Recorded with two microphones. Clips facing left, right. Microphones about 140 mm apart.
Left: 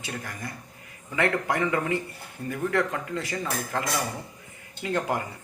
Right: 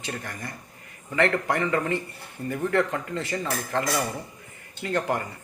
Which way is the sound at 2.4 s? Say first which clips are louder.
Right 2 dB; centre (ahead or behind).